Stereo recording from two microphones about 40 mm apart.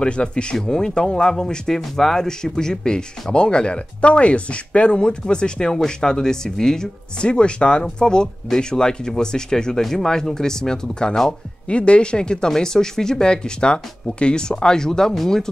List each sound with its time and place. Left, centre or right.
0.0 s speech: left